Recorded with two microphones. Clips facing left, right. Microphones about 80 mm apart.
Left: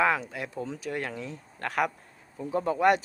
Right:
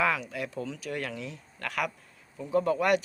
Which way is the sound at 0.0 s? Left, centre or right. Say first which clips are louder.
Left 2 dB; left.